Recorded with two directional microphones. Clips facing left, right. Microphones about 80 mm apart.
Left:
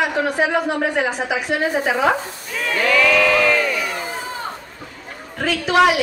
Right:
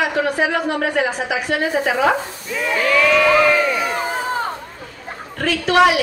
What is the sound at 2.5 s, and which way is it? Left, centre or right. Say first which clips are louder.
Speech: right 1 dB; centre.